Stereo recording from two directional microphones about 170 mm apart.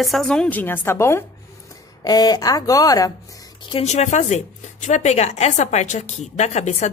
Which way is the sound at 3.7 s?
35° left (ahead or behind).